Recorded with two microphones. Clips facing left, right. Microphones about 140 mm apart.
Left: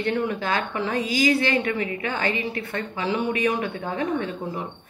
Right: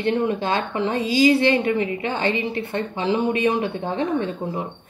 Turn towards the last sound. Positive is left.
turn(degrees=-25)  # may be behind; listen again after turning